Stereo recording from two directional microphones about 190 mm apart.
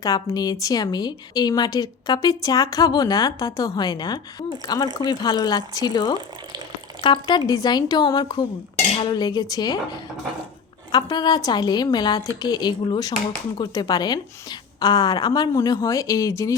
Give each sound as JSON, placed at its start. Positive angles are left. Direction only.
{"t": 0.0, "sound": "a woman's voice", "side_deg": 20}